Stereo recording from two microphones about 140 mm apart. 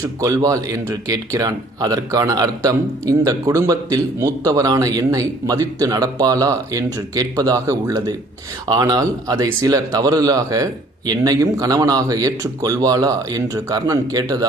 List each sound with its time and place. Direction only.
0.0 s speech: 25° right (ahead or behind)